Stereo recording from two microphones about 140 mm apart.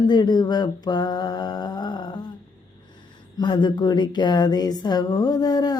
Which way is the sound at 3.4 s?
35° left (ahead or behind).